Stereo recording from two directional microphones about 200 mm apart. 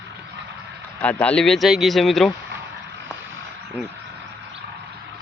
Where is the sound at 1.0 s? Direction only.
5° left (ahead or behind).